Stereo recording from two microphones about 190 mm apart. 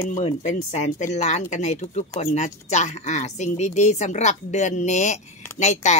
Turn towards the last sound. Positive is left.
turn(degrees=35)  # may be behind; listen again after turning